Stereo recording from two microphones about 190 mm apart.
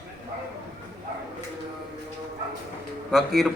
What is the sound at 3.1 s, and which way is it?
Speech, centre (ahead or behind).